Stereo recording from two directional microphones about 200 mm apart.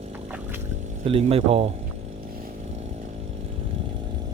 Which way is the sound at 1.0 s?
30° right (ahead or behind).